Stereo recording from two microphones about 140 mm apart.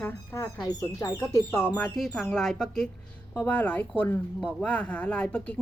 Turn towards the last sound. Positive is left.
turn(degrees=10)  # may be behind; listen again after turning